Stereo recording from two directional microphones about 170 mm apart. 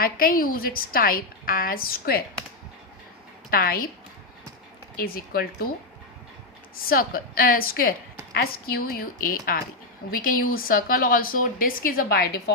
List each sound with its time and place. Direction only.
0.0 s speech: 55° left (ahead or behind)
3.5 s speech: 60° left (ahead or behind)
4.9 s speech: 60° left (ahead or behind)
6.8 s speech: 60° left (ahead or behind)